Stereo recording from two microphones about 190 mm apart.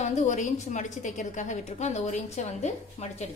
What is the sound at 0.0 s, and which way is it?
A woman's voice, 40° left (ahead or behind).